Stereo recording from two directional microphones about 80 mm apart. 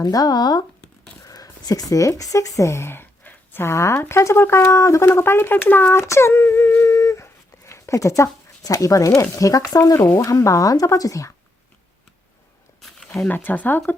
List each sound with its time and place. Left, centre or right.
0.0 s speech: left
9.9 s speech: left
12.8 s a sound: centre
13.2 s speech: left